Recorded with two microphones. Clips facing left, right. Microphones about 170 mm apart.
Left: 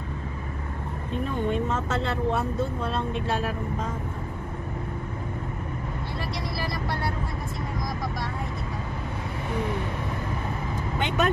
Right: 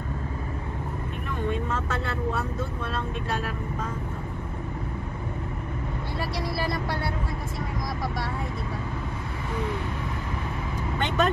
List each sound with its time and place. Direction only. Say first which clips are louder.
1.7 s speech: left 2 dB; 25° left (ahead or behind)
11.0 s speech: right 1 dB; 15° left (ahead or behind)